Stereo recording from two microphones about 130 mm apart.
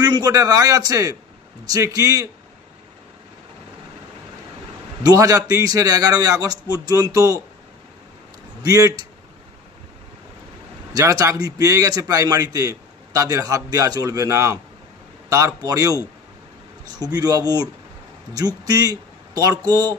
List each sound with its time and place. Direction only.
0.0 s a man's voice: 30° right (ahead or behind)
5.0 s a man's voice: 25° right (ahead or behind)
8.6 s a man's voice: 25° right (ahead or behind)
10.9 s a man's voice: 25° right (ahead or behind)